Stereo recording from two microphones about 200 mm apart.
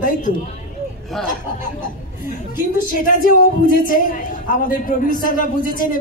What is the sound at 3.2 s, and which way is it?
A man's voice, 45° left (ahead or behind).